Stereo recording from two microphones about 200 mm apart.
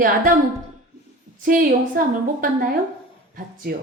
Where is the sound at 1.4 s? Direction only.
45° right (ahead or behind).